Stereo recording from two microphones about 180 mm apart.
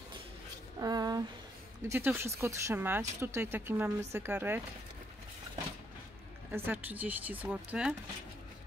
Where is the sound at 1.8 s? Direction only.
15° right (ahead or behind).